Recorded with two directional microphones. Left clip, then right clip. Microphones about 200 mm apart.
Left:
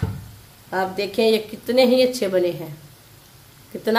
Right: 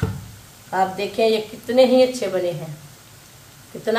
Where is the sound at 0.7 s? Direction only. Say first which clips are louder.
Right 2 dB; 55° left (ahead or behind).